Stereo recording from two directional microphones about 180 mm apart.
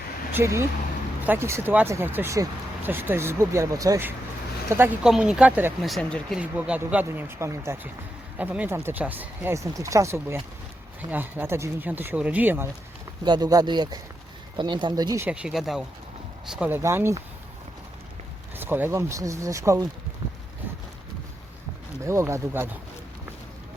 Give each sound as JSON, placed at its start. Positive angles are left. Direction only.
{"t": 0.3, "sound": "speech", "side_deg": -15}
{"t": 5.0, "sound": "speech", "side_deg": -5}
{"t": 6.4, "sound": "speech", "side_deg": -10}
{"t": 13.2, "sound": "speech", "side_deg": -25}
{"t": 15.3, "sound": "speech", "side_deg": -5}
{"t": 18.5, "sound": "speech", "side_deg": -10}
{"t": 22.0, "sound": "speech", "side_deg": -15}